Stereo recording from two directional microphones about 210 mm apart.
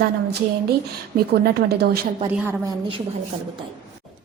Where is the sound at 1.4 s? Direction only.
50° right (ahead or behind).